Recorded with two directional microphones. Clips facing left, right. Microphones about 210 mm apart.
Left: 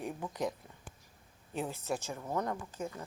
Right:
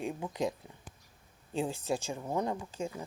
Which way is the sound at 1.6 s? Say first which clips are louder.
Right 4 dB; 30° right (ahead or behind).